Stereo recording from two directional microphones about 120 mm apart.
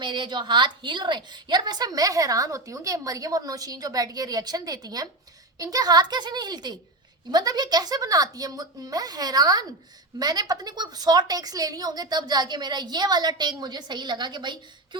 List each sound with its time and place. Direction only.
0.0 s a woman's voice: 40° right (ahead or behind)